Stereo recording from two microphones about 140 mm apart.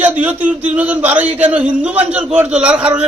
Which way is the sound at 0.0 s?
10° right (ahead or behind).